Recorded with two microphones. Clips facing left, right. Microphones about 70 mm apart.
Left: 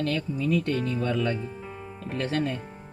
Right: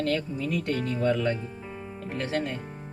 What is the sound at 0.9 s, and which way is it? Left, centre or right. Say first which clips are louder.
Speech: right 1 dB; right.